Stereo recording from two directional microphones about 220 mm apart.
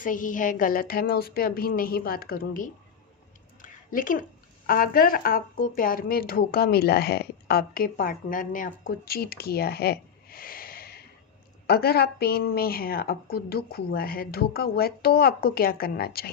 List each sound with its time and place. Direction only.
0.0 s a woman's voice: 35° left (ahead or behind)